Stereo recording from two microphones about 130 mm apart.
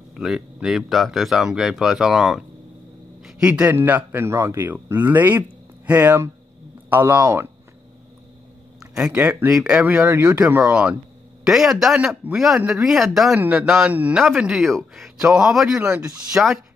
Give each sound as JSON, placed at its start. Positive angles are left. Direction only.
{"t": 0.2, "sound": "speech", "side_deg": -5}
{"t": 8.7, "sound": "a sound", "side_deg": -5}
{"t": 9.3, "sound": "speech", "side_deg": -10}